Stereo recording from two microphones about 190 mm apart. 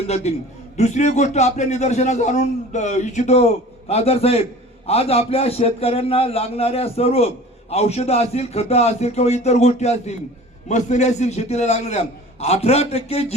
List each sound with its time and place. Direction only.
0.1 s a man's voice: 35° left (ahead or behind)